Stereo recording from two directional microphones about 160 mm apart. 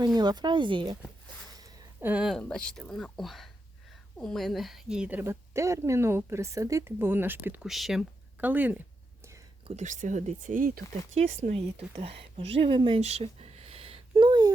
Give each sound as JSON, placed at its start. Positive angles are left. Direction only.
{"t": 0.0, "sound": "speech", "side_deg": -25}
{"t": 2.0, "sound": "a woman's voice", "side_deg": -10}
{"t": 7.7, "sound": "speech", "side_deg": 0}
{"t": 9.6, "sound": "speech", "side_deg": -50}
{"t": 11.1, "sound": "speech", "side_deg": -40}
{"t": 13.0, "sound": "a sound", "side_deg": -40}